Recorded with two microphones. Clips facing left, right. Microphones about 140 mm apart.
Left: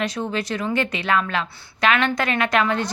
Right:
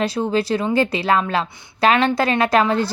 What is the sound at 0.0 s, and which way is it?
A woman's voice, 30° right (ahead or behind).